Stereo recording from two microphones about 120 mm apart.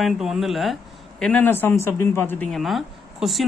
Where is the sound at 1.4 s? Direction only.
15° left (ahead or behind).